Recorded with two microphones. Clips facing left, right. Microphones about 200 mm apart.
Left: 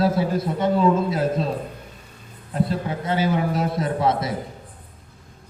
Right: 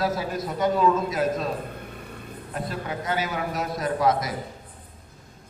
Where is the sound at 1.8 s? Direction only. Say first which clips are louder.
Right 5 dB; 60° right (ahead or behind).